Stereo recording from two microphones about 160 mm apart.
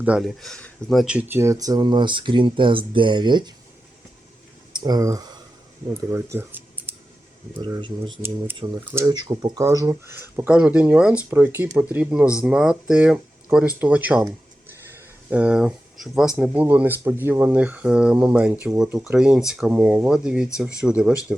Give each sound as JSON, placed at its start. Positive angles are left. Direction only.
{"t": 0.0, "sound": "speech", "side_deg": -5}
{"t": 4.7, "sound": "speech", "side_deg": -25}
{"t": 7.6, "sound": "speech", "side_deg": -30}
{"t": 8.8, "sound": "speech", "side_deg": -10}
{"t": 9.0, "sound": "speech", "side_deg": -25}